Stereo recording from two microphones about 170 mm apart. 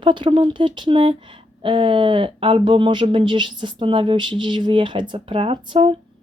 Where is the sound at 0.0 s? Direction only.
30° right (ahead or behind).